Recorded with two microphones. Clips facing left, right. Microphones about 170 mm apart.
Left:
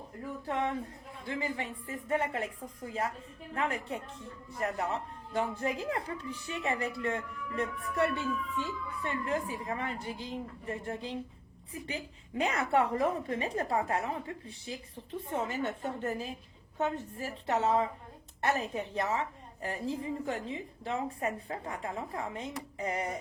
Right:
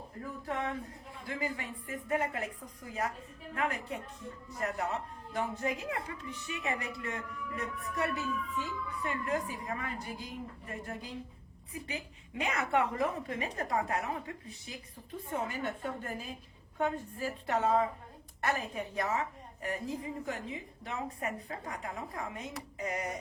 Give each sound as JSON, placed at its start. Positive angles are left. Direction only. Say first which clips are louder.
{"t": 0.4, "sound": "a woman's voice", "louder": "left 3 dB", "side_deg": 30}